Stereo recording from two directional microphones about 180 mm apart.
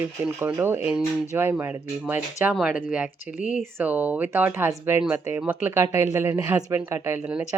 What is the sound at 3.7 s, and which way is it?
Speech, 10° right (ahead or behind).